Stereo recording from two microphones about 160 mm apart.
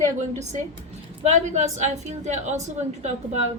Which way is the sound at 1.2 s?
45° right (ahead or behind).